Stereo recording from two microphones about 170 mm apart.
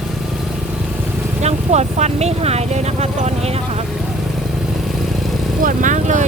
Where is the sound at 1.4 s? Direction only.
40° right (ahead or behind).